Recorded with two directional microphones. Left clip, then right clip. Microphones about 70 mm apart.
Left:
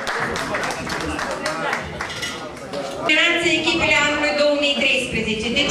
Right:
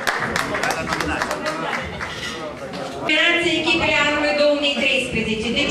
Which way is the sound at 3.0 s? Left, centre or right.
Left.